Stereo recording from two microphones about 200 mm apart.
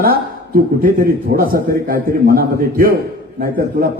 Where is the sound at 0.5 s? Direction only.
45° right (ahead or behind).